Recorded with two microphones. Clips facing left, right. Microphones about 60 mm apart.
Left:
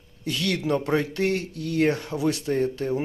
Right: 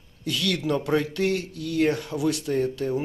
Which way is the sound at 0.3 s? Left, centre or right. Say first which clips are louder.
Left 1 dB; left.